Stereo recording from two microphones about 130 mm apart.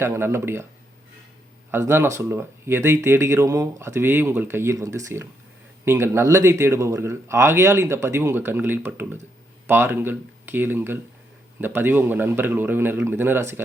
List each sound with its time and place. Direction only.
0.0 s speech: 20° right (ahead or behind)
1.7 s speech: 20° right (ahead or behind)